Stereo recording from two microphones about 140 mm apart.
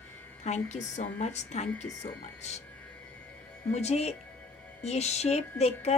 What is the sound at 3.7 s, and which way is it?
Music, 50° left (ahead or behind).